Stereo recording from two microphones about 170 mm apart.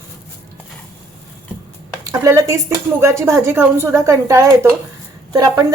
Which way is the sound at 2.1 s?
20° right (ahead or behind).